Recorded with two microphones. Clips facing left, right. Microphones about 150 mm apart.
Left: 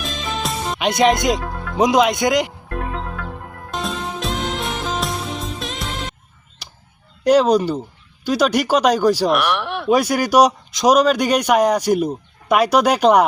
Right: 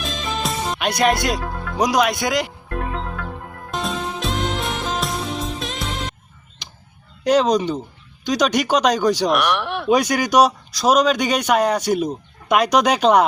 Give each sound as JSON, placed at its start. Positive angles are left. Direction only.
{"t": 0.0, "sound": "music", "side_deg": 0}
{"t": 1.0, "sound": "speech", "side_deg": 20}
{"t": 1.4, "sound": "music", "side_deg": 0}
{"t": 1.8, "sound": "speech", "side_deg": 20}
{"t": 2.6, "sound": "music", "side_deg": 0}
{"t": 7.3, "sound": "speech", "side_deg": 10}
{"t": 10.7, "sound": "a man's voice", "side_deg": 20}
{"t": 10.9, "sound": "speech", "side_deg": 10}